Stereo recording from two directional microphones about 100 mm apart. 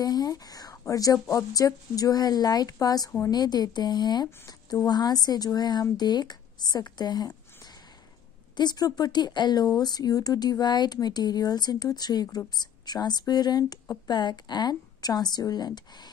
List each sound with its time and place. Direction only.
0.0 s a woman's voice: 40° left (ahead or behind)